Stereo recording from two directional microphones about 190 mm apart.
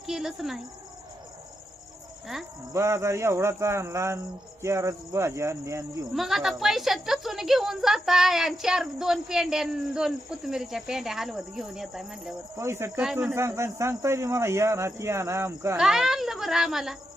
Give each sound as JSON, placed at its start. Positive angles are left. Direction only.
{"t": 0.0, "sound": "speech", "side_deg": 0}
{"t": 2.7, "sound": "speech", "side_deg": -15}
{"t": 6.1, "sound": "a woman's voice", "side_deg": 0}
{"t": 12.5, "sound": "speech", "side_deg": -15}
{"t": 15.8, "sound": "a woman's voice", "side_deg": 0}